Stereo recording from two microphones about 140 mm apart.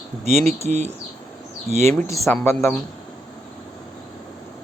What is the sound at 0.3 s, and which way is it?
Speech, 50° right (ahead or behind).